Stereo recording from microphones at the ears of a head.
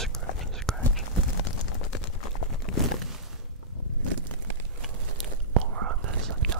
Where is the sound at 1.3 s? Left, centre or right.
Left.